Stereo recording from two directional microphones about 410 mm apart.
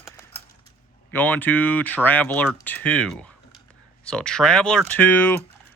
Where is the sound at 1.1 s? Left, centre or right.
Centre.